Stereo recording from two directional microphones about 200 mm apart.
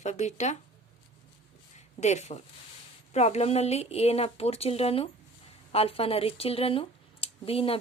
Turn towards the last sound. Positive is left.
turn(degrees=30)  # may be behind; listen again after turning